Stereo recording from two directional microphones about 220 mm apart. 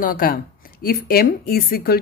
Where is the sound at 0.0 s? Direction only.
40° left (ahead or behind).